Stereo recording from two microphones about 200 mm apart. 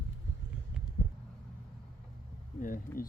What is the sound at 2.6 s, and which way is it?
Speech, 45° left (ahead or behind).